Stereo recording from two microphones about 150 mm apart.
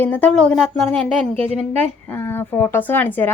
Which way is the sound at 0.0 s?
10° left (ahead or behind).